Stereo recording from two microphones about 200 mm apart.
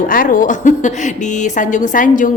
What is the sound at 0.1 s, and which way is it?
A woman's voice, 45° left (ahead or behind).